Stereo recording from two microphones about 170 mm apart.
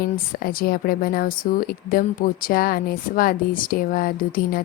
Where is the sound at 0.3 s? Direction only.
60° left (ahead or behind).